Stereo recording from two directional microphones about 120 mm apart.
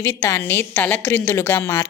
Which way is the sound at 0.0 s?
20° left (ahead or behind).